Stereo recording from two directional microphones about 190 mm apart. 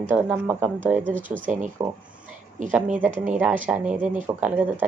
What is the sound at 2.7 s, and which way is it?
Speech, 10° right (ahead or behind).